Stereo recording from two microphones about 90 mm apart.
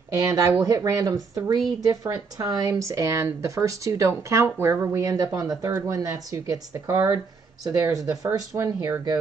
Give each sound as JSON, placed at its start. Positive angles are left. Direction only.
{"t": 0.1, "sound": "a woman's voice", "side_deg": -40}
{"t": 2.7, "sound": "speech", "side_deg": -35}